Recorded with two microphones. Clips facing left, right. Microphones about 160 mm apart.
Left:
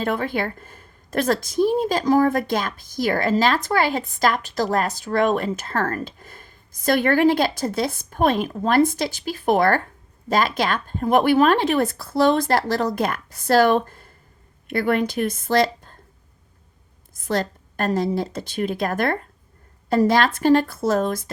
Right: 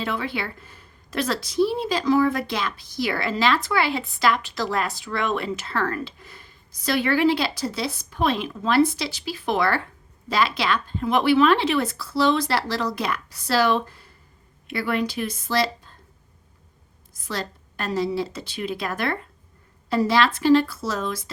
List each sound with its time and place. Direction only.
0.0 s a woman's voice: 45° left (ahead or behind)
17.2 s a woman's voice: 50° left (ahead or behind)